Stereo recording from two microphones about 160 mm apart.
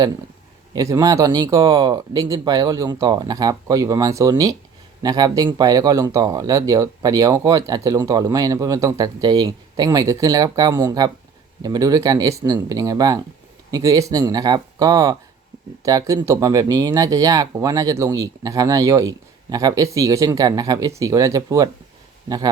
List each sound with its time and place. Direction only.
0.7 s speech: 25° right (ahead or behind)